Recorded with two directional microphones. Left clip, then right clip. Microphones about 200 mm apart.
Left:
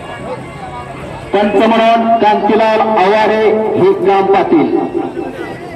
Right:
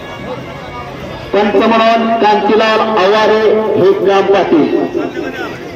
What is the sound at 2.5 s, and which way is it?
Speech, 30° left (ahead or behind).